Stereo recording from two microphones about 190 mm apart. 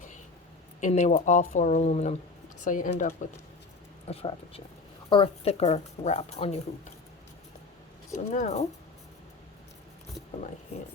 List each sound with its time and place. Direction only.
0.8 s speech: 35° left (ahead or behind)
8.2 s speech: 40° left (ahead or behind)